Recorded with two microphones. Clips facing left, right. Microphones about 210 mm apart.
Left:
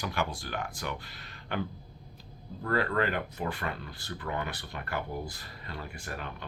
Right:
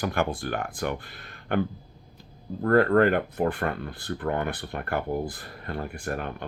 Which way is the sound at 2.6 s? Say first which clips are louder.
Right 10 dB; 50° right (ahead or behind).